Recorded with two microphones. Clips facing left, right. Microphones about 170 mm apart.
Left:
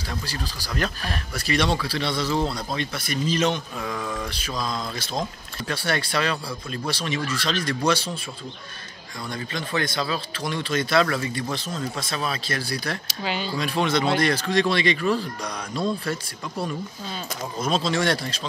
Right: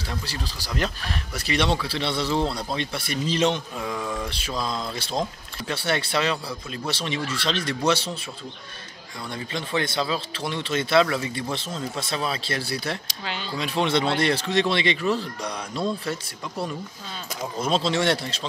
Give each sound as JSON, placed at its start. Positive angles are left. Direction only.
{"t": 0.3, "sound": "speech", "side_deg": -25}
{"t": 9.3, "sound": "speech", "side_deg": -25}
{"t": 13.2, "sound": "speech", "side_deg": 5}
{"t": 13.6, "sound": "speech", "side_deg": -25}
{"t": 17.6, "sound": "speech", "side_deg": -25}